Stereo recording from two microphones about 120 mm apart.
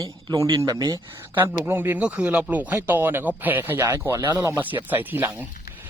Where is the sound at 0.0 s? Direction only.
35° right (ahead or behind).